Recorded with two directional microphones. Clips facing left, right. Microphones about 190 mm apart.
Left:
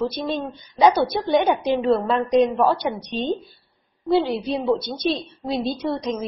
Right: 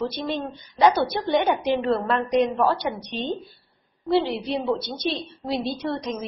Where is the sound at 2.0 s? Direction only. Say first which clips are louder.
Left 3 dB; 15° left (ahead or behind).